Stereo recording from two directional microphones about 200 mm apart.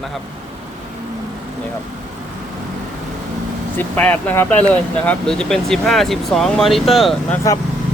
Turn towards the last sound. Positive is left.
turn(degrees=0)  # may be behind; listen again after turning